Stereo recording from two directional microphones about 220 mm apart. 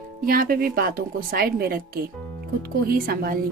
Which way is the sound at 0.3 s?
40° right (ahead or behind).